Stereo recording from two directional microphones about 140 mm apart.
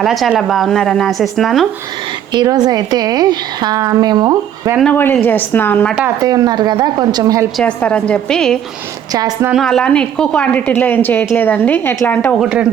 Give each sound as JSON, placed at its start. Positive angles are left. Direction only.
{"t": 0.0, "sound": "speech", "side_deg": 0}
{"t": 2.3, "sound": "a woman's voice", "side_deg": -30}
{"t": 4.8, "sound": "a woman's voice", "side_deg": 10}
{"t": 6.2, "sound": "a woman's voice", "side_deg": -25}
{"t": 7.5, "sound": "a woman's voice", "side_deg": 10}
{"t": 9.1, "sound": "a woman's voice", "side_deg": -30}
{"t": 9.5, "sound": "a woman's voice", "side_deg": 0}